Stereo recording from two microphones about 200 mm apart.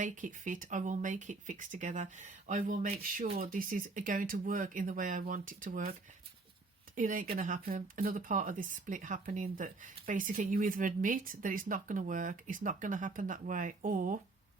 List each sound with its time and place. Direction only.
0.0 s speech: 40° right (ahead or behind)